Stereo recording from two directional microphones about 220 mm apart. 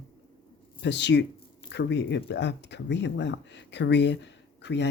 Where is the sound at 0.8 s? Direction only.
50° left (ahead or behind).